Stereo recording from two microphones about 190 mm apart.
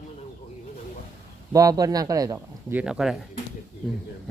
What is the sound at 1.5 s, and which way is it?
A man's voice, 20° right (ahead or behind).